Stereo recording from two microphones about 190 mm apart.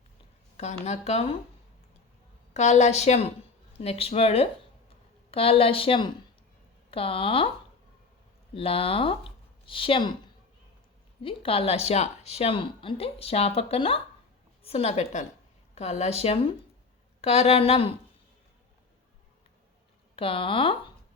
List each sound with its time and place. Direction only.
0.5 s speech: 35° left (ahead or behind)
2.5 s a woman's voice: 35° left (ahead or behind)
8.5 s speech: 30° left (ahead or behind)
11.2 s speech: 30° left (ahead or behind)
20.1 s speech: 30° left (ahead or behind)